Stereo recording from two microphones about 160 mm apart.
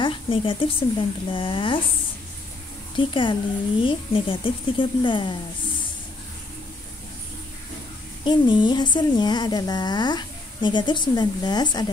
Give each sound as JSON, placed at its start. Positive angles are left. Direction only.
{"t": 0.0, "sound": "speech", "side_deg": 35}
{"t": 3.0, "sound": "speech", "side_deg": 30}
{"t": 8.2, "sound": "speech", "side_deg": 30}